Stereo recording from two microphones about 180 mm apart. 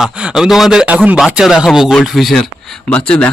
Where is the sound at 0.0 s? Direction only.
5° right (ahead or behind).